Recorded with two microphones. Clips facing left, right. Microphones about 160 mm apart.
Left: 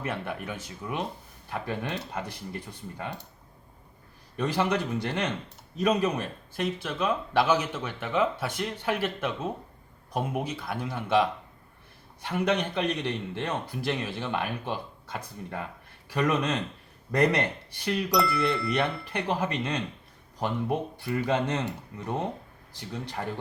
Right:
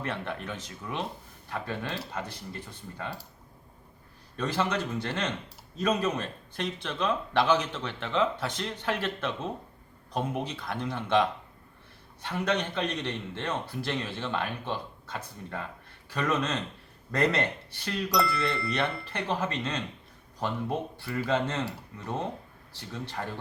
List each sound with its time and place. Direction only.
0.0 s speech: 10° left (ahead or behind)
4.4 s speech: 15° left (ahead or behind)